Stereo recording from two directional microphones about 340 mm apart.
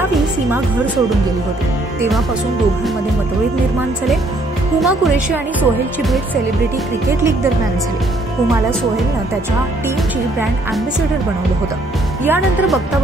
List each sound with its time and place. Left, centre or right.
4.7 s speech: centre
12.3 s speech: centre